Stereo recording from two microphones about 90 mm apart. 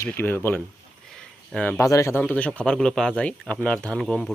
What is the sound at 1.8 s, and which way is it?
Speech, 35° left (ahead or behind).